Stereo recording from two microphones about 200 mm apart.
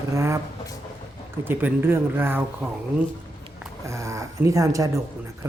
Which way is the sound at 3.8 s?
15° right (ahead or behind).